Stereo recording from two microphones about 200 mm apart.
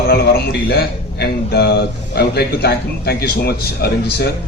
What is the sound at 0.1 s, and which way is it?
A man's voice, 50° left (ahead or behind).